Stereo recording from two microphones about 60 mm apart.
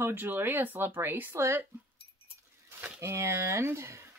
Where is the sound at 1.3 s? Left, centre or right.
Right.